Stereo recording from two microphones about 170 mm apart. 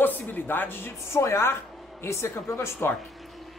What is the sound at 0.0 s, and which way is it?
Speech, 10° left (ahead or behind).